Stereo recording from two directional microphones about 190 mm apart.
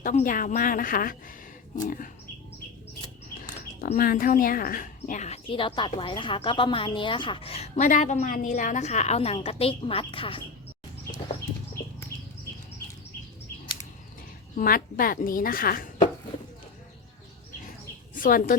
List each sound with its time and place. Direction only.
0.0 s a woman's voice: 45° left (ahead or behind)
3.8 s speech: 50° left (ahead or behind); by 10.4 s 25° left (ahead or behind)
14.5 s a woman's voice: 50° left (ahead or behind)
18.1 s a woman's voice: 45° left (ahead or behind)